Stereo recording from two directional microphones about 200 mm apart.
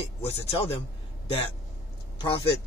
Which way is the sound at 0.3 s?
30° left (ahead or behind).